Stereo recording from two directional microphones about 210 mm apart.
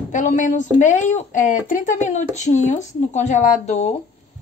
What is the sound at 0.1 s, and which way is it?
Speech, 35° left (ahead or behind).